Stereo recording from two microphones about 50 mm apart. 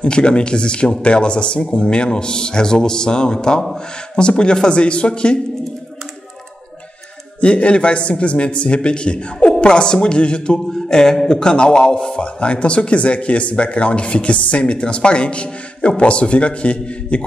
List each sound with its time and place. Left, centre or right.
0.0 s a man's voice: centre
7.3 s a man's voice: left